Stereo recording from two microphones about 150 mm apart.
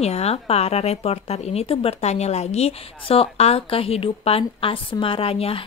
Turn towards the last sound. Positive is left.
turn(degrees=40)  # may be behind; listen again after turning